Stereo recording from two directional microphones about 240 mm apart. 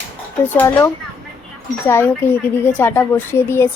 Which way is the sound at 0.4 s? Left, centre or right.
Centre.